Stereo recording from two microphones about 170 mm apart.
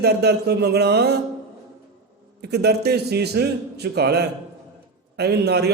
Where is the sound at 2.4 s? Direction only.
75° right (ahead or behind).